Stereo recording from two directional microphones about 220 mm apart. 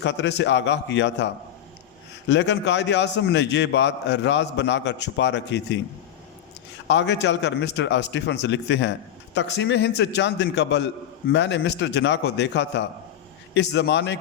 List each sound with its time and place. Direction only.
0.0 s a man's voice: 50° left (ahead or behind)
6.8 s a man's voice: 55° left (ahead or behind)